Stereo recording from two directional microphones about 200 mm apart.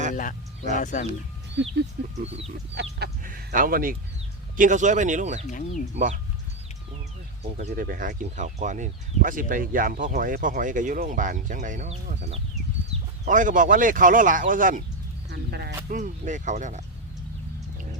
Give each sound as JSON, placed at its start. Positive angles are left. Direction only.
{"t": 0.1, "sound": "speech", "side_deg": 40}
{"t": 1.6, "sound": "speech", "side_deg": -60}
{"t": 2.2, "sound": "speech", "side_deg": -30}
{"t": 3.0, "sound": "speech", "side_deg": -45}
{"t": 7.5, "sound": "speech", "side_deg": -45}
{"t": 15.3, "sound": "speech", "side_deg": -55}
{"t": 16.0, "sound": "speech", "side_deg": -40}